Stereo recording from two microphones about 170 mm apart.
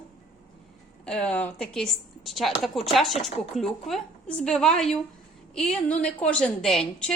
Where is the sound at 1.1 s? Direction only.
5° left (ahead or behind).